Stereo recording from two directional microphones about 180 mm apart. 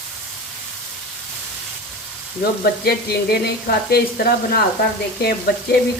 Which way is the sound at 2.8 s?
60° left (ahead or behind).